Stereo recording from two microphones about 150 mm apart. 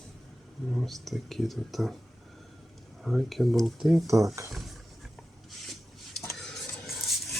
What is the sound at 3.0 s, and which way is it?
Speech, centre (ahead or behind).